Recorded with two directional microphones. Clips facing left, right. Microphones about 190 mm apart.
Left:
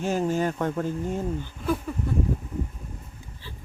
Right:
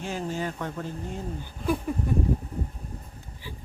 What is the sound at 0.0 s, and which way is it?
Speech, 45° left (ahead or behind).